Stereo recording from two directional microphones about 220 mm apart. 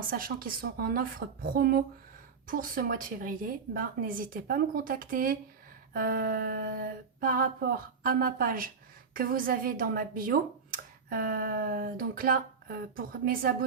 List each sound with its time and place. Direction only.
0.1 s speech: 40° right (ahead or behind)